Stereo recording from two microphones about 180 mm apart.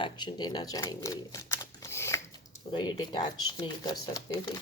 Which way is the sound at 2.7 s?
25° left (ahead or behind).